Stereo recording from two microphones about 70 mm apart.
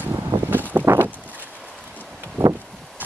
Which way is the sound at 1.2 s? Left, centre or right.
Right.